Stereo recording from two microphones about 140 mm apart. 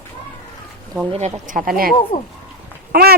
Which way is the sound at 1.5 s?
80° right.